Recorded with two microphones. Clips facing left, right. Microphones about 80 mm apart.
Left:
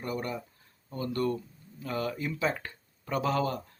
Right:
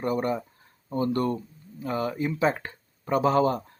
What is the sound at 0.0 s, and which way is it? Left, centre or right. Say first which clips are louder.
Speech: right 8 dB; right.